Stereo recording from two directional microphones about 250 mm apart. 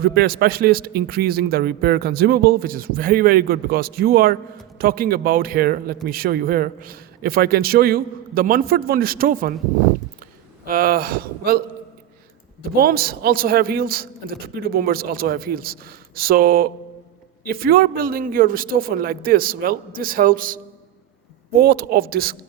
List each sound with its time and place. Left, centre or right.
0.0 s a man's voice: right
10.7 s a man's voice: right
12.7 s a man's voice: right
21.6 s a man's voice: right